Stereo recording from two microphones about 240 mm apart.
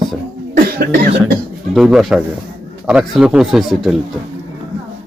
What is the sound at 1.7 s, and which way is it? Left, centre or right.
A man's voice, centre.